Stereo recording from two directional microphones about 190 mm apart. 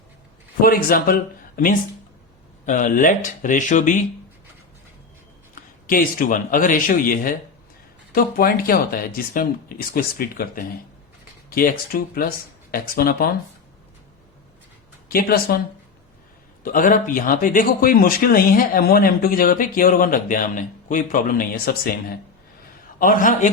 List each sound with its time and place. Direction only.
0.6 s speech: 50° left (ahead or behind)
5.9 s speech: 45° left (ahead or behind)
15.1 s speech: 50° left (ahead or behind)
16.7 s speech: 45° left (ahead or behind)